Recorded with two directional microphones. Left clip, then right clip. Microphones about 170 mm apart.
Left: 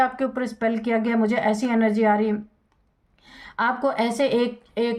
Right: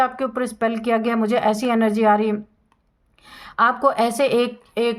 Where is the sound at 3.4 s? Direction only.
35° right (ahead or behind).